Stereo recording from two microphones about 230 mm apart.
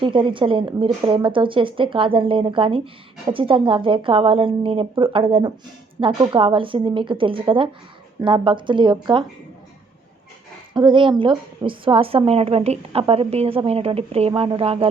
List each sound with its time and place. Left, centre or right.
0.0 s a woman's voice: right
10.8 s a woman's voice: right